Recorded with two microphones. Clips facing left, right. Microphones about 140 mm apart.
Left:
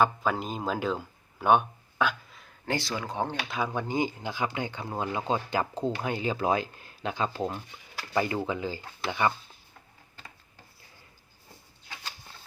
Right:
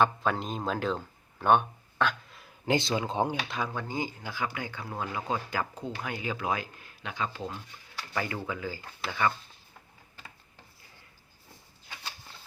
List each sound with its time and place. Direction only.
0.0 s speech: 5° left (ahead or behind)
2.6 s speech: 20° right (ahead or behind)
3.7 s speech: 20° left (ahead or behind); by 7.6 s 35° left (ahead or behind)
8.1 s speech: 20° left (ahead or behind)